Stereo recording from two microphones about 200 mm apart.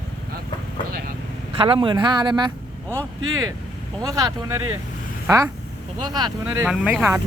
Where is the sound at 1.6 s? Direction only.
25° right (ahead or behind).